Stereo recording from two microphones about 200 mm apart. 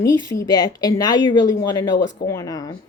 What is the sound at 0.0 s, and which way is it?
A woman's voice, 15° left (ahead or behind).